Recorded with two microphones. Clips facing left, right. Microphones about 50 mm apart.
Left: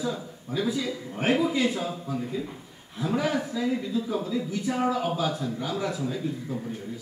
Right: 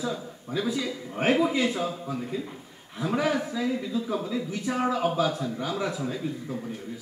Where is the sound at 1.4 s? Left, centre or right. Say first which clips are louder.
Even; centre.